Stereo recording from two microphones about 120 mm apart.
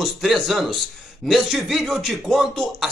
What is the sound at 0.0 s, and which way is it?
Speech, centre (ahead or behind).